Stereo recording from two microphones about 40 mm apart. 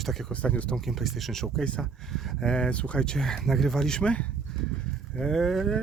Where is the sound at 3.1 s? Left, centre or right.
Centre.